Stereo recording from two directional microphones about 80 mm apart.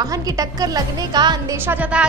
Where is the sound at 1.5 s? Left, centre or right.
Right.